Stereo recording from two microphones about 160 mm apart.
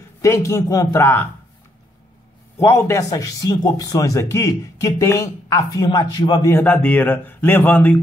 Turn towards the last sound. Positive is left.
turn(degrees=10)  # may be behind; listen again after turning